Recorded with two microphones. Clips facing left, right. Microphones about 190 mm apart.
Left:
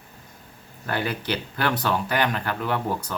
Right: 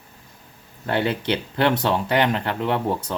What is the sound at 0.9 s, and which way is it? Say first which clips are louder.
Speech: right 5 dB; 25° right (ahead or behind).